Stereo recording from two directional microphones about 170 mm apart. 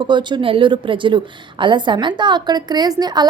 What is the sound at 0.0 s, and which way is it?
A woman's voice, 25° right (ahead or behind).